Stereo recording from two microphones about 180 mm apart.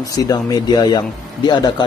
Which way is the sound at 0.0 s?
20° left (ahead or behind).